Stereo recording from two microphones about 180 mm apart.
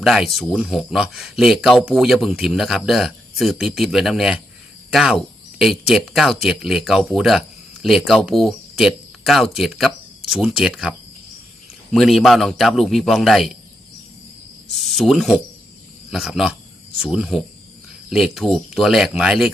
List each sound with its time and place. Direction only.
0.0 s speech: centre (ahead or behind)
14.7 s speech: centre (ahead or behind)